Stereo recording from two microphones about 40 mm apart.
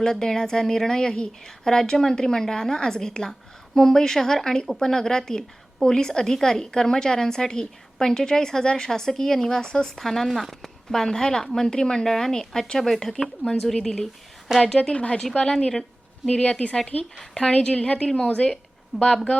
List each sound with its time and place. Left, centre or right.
0.0 s a woman's voice: centre
10.9 s a woman's voice: centre
14.5 s a woman's voice: centre
15.4 s a woman's voice: centre
16.3 s a woman's voice: left